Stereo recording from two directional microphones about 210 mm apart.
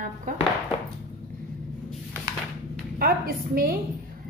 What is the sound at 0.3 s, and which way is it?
Speech, 40° right (ahead or behind).